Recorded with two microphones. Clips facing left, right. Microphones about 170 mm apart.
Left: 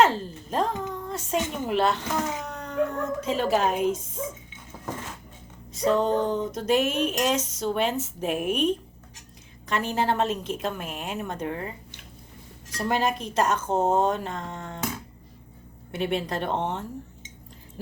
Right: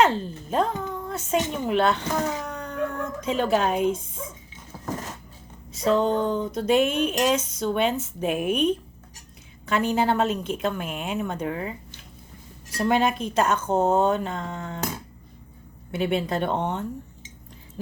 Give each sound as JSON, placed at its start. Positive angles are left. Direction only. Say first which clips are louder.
{"t": 0.0, "sound": "speech", "louder": "even", "side_deg": 0}
{"t": 5.7, "sound": "speech", "louder": "right 1 dB", "side_deg": 0}
{"t": 12.7, "sound": "speech", "louder": "right 3 dB", "side_deg": 0}
{"t": 15.9, "sound": "speech", "louder": "right 3 dB", "side_deg": 0}